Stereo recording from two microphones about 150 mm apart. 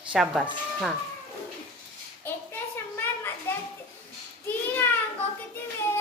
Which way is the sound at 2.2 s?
15° left (ahead or behind).